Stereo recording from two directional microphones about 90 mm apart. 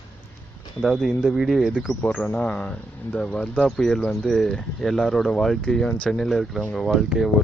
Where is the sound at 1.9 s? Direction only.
15° left (ahead or behind).